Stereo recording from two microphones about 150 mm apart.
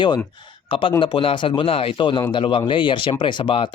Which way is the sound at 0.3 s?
35° left (ahead or behind).